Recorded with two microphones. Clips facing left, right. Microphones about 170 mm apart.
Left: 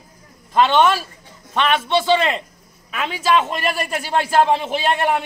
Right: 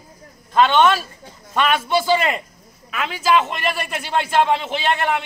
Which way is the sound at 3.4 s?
35° left (ahead or behind).